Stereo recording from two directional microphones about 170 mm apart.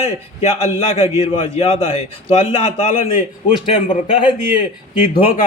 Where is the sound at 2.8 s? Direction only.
50° left (ahead or behind).